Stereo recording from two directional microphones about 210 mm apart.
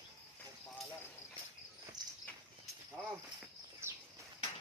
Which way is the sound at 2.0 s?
20° right (ahead or behind).